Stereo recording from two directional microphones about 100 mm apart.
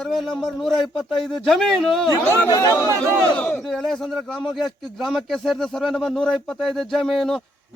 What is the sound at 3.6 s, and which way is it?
Speech, centre (ahead or behind).